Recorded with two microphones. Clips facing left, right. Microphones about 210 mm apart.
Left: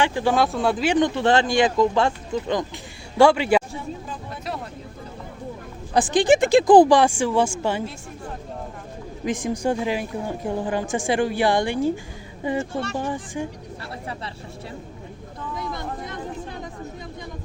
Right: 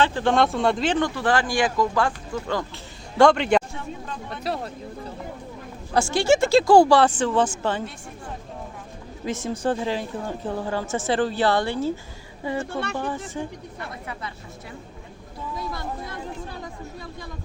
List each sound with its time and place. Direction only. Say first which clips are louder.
0.0 s speech: even; 15° left (ahead or behind)
0.9 s speech: left 4 dB; 20° left (ahead or behind)
3.2 s a woman's voice: left 1 dB; 10° left (ahead or behind)
4.5 s speech: right 3 dB; 35° right (ahead or behind)
5.9 s a woman's voice: left 2 dB; 15° left (ahead or behind)
9.2 s a woman's voice: left 2 dB; 15° left (ahead or behind)
13.8 s speech: left 2 dB; 30° left (ahead or behind)
15.5 s a sound: left 1 dB; 20° left (ahead or behind)